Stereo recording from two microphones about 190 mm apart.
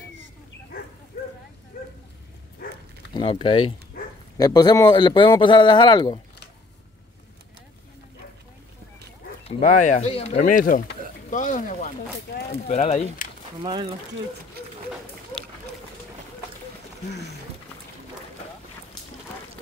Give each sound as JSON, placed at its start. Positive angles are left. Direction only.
{"t": 1.1, "sound": "a sound", "side_deg": 40}
{"t": 3.2, "sound": "speech", "side_deg": 30}
{"t": 9.5, "sound": "speech", "side_deg": 40}
{"t": 13.6, "sound": "speech", "side_deg": -25}